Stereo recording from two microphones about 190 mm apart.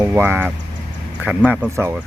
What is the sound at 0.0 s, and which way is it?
Speech, 10° right (ahead or behind).